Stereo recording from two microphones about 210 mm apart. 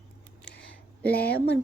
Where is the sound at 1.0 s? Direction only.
50° left (ahead or behind).